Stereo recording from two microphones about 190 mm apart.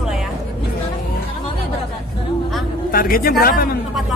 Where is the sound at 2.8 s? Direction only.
50° left (ahead or behind).